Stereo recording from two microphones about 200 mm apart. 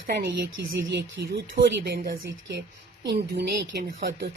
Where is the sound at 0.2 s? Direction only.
55° right (ahead or behind).